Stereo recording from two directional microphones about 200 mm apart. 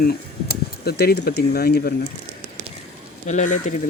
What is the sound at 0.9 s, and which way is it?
Speech, 55° left (ahead or behind).